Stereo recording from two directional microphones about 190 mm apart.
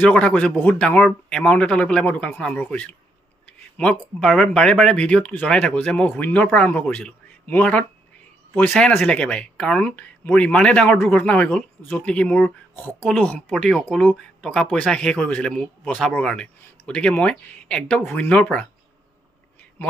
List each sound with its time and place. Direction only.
0.0 s speech: 5° left (ahead or behind)